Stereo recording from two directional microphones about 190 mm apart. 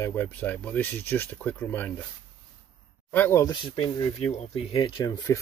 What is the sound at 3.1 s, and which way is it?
Speech, 10° left (ahead or behind).